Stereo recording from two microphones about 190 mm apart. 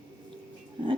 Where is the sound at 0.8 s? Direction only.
25° right (ahead or behind).